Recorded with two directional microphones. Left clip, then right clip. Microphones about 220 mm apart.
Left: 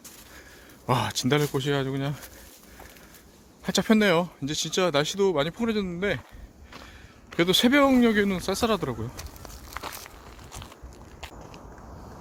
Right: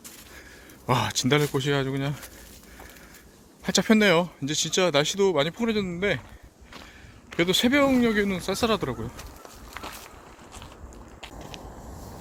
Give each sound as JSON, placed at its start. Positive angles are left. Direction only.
{"t": 0.9, "sound": "speech", "side_deg": 5}
{"t": 3.6, "sound": "speech", "side_deg": 5}
{"t": 7.3, "sound": "speech", "side_deg": 25}
{"t": 9.1, "sound": "a sound", "side_deg": 30}